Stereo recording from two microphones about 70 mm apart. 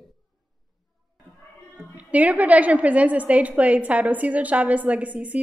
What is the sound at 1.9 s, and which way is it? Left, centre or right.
A woman's voice, right.